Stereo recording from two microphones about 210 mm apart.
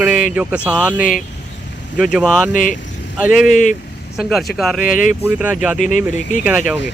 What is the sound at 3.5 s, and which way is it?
Speech, 35° left (ahead or behind).